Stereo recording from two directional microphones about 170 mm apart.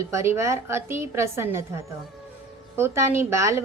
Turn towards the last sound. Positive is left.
turn(degrees=-15)  # may be behind; listen again after turning